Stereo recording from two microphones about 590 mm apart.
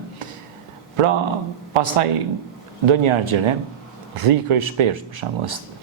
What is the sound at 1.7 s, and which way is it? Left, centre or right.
Speech, right.